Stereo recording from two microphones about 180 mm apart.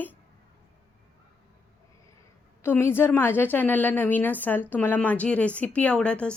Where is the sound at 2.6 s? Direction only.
15° left (ahead or behind).